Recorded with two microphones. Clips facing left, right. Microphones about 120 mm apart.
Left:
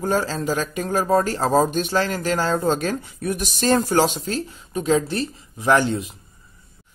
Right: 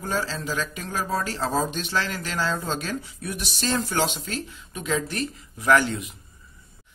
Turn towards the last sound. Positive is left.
turn(degrees=30)  # may be behind; listen again after turning